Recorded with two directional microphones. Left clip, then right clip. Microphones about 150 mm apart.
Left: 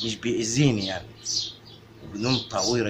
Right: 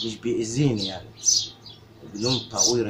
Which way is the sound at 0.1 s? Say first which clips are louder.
Even; 10° left (ahead or behind).